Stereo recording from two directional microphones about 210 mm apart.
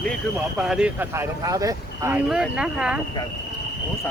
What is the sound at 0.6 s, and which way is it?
Speech, 5° right (ahead or behind).